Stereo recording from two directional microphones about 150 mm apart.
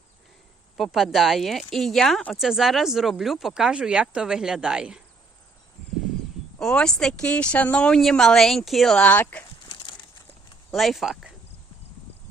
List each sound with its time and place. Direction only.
0.8 s speech: centre (ahead or behind)
6.6 s speech: 5° left (ahead or behind)
10.7 s speech: centre (ahead or behind)